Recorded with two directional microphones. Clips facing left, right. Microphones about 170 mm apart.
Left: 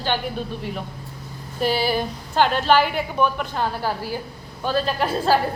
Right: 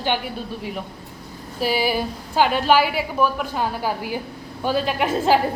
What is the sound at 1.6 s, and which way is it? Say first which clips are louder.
A woman's voice: even; 10° right (ahead or behind).